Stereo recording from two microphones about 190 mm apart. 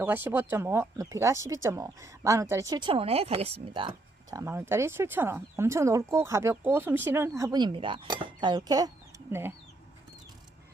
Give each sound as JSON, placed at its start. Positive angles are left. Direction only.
{"t": 0.0, "sound": "speech", "side_deg": -10}